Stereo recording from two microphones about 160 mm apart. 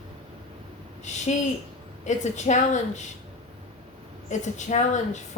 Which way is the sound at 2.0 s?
50° left (ahead or behind).